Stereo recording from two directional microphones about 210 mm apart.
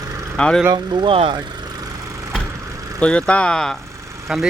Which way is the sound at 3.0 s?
5° left (ahead or behind).